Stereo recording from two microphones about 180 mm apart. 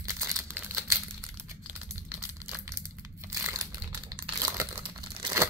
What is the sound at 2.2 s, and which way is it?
Crumpling, 15° right (ahead or behind).